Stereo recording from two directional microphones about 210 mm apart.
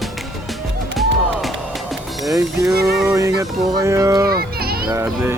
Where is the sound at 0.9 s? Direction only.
Centre (ahead or behind).